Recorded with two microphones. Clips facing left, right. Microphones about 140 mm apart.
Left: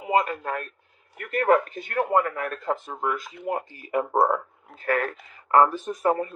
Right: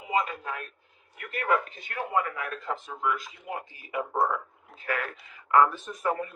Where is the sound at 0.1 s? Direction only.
55° left (ahead or behind).